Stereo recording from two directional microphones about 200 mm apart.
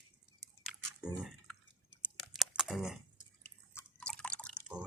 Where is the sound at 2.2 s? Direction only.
Centre (ahead or behind).